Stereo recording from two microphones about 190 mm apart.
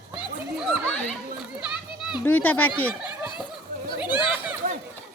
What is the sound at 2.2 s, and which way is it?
Speech, 10° left (ahead or behind).